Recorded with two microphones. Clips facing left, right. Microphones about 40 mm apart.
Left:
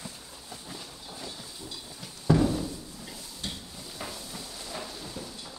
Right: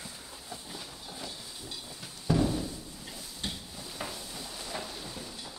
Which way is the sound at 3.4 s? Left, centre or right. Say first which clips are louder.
Even; right.